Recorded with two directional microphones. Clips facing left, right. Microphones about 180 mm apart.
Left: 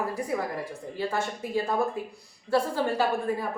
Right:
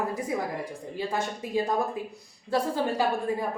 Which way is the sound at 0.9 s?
15° right (ahead or behind).